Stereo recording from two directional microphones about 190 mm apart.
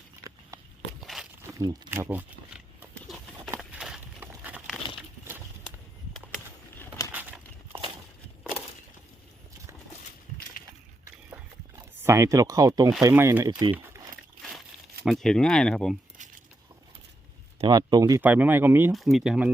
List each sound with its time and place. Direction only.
1.0 s a sound: centre (ahead or behind)
1.5 s speech: 20° right (ahead or behind)
1.9 s speech: 10° right (ahead or behind)
2.9 s horse: centre (ahead or behind)
3.6 s a sound: 5° right (ahead or behind)
7.1 s a sound: 10° right (ahead or behind)
11.8 s speech: 15° right (ahead or behind)
15.0 s speech: centre (ahead or behind)
17.6 s speech: 20° right (ahead or behind)
18.2 s speech: 10° right (ahead or behind)